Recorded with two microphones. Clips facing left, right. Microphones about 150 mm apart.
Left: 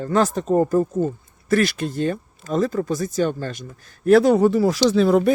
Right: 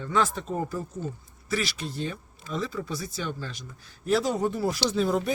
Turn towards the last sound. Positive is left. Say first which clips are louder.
# left 9 dB
turn(degrees=80)